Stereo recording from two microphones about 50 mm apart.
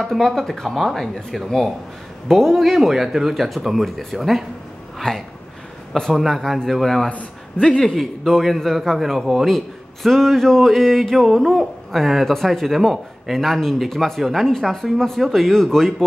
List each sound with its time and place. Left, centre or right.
0.0 s speech: centre
7.1 s a man's voice: left
7.8 s speech: centre